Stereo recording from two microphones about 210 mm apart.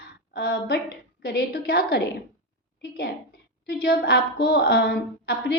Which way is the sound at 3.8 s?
50° left (ahead or behind).